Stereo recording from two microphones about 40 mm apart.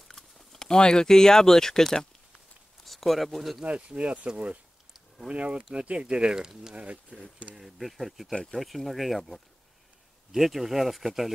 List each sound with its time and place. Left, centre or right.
0.1 s speech: centre
3.6 s speech: right
7.5 s speech: centre